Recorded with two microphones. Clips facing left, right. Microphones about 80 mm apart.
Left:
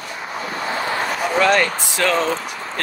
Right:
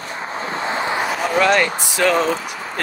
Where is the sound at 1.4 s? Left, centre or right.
Left.